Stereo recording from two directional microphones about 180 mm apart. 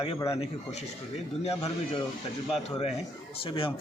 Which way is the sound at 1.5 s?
35° left (ahead or behind).